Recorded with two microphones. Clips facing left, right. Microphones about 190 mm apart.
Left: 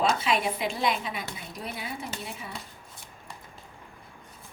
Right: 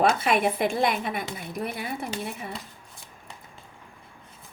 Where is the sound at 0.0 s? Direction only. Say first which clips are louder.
Right 4 dB; 55° right (ahead or behind).